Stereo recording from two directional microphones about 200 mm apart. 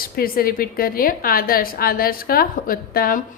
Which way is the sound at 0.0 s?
45° left (ahead or behind).